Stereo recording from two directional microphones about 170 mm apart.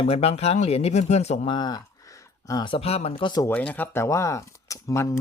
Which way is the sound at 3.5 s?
5° left (ahead or behind).